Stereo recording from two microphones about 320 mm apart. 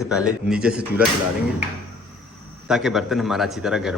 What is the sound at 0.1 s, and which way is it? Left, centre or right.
Speech, centre.